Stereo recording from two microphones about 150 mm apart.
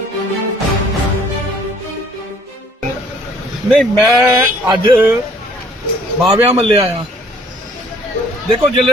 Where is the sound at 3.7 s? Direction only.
5° left (ahead or behind).